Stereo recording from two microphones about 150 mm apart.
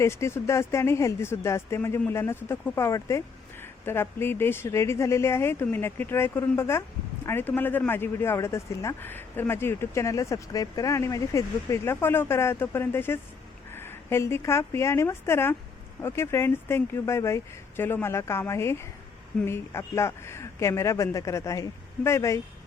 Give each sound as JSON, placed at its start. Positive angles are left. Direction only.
{"t": 0.0, "sound": "a woman's voice", "side_deg": 20}